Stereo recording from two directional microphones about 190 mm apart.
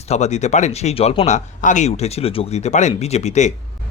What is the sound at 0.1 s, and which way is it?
Speech, 35° left (ahead or behind).